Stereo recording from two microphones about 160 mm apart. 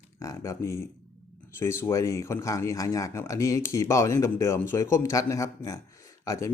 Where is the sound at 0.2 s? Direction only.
20° left (ahead or behind).